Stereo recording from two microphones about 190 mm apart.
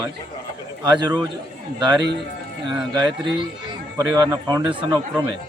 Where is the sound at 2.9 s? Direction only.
25° right (ahead or behind).